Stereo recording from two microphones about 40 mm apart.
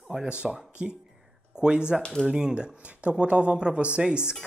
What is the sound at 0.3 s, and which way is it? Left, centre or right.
Speech, right.